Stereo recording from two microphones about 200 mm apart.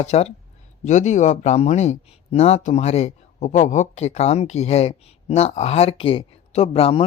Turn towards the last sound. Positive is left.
turn(degrees=30)  # may be behind; listen again after turning